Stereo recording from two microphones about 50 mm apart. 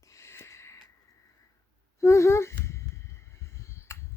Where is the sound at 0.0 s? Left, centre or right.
Left.